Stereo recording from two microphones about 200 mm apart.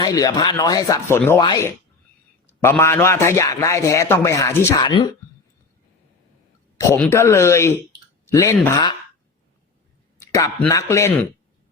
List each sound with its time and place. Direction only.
0.0 s a man's voice: 20° left (ahead or behind)
6.7 s a man's voice: 15° left (ahead or behind)
10.2 s speech: 15° left (ahead or behind)